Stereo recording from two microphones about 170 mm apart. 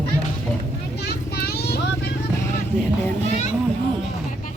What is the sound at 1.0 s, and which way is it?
Vehicle, 70° left (ahead or behind).